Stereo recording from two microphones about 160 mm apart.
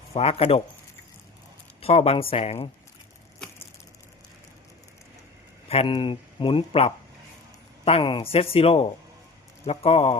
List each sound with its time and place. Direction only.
0.1 s speech: 40° left (ahead or behind)
1.8 s speech: 40° left (ahead or behind)
5.6 s speech: 40° left (ahead or behind)